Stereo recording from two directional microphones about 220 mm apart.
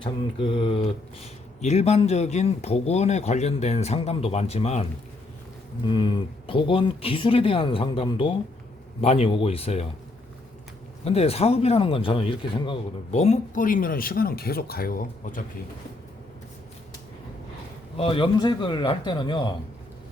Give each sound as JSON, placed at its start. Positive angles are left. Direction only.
{"t": 0.0, "sound": "speech", "side_deg": 25}
{"t": 11.0, "sound": "speech", "side_deg": 30}
{"t": 17.9, "sound": "speech", "side_deg": 25}